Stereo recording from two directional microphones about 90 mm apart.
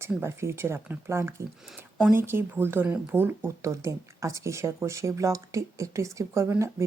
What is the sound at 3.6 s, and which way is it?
Speech, 35° right (ahead or behind).